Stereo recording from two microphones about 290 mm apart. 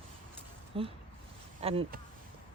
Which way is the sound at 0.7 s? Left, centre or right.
Centre.